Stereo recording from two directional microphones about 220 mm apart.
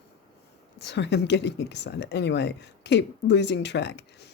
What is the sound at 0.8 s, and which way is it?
Speech, 50° left (ahead or behind).